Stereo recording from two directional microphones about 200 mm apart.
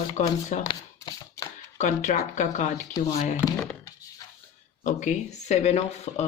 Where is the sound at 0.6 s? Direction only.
20° left (ahead or behind).